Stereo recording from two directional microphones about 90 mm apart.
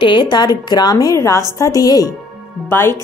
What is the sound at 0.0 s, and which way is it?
A woman's voice, 60° left (ahead or behind).